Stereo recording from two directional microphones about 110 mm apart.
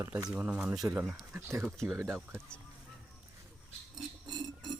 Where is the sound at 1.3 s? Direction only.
20° right (ahead or behind).